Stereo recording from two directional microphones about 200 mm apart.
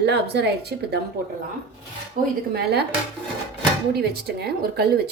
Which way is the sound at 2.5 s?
55° right (ahead or behind).